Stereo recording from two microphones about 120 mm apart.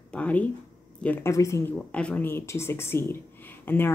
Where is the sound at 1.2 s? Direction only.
25° left (ahead or behind).